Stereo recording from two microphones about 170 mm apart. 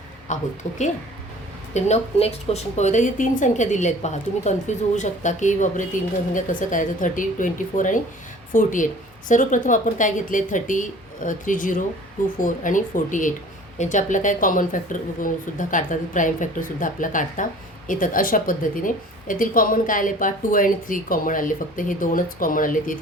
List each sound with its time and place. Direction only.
0.3 s a woman's voice: 45° left (ahead or behind)
1.7 s a woman's voice: 40° left (ahead or behind)